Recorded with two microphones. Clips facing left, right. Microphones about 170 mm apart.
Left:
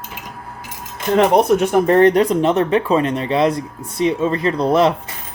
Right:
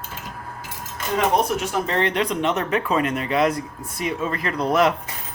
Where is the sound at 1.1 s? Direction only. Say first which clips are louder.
Left 8 dB; 60° left (ahead or behind); by 4.9 s 30° left (ahead or behind).